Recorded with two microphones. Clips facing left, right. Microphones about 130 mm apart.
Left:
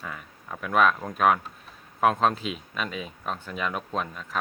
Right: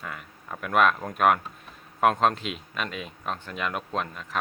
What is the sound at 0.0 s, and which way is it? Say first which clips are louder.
Speech: even; centre (ahead or behind).